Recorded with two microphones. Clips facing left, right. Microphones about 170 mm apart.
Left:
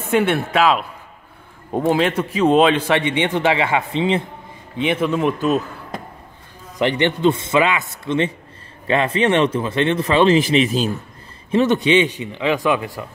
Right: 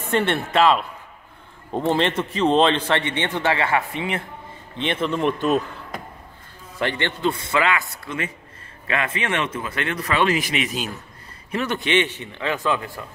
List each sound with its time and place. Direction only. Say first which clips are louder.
0.1 s a man's voice: left 4 dB; 5° left (ahead or behind); by 4.2 s 25° left (ahead or behind)
4.7 s a man's voice: left 4 dB; 10° left (ahead or behind)
6.8 s a man's voice: left 6 dB; 15° left (ahead or behind)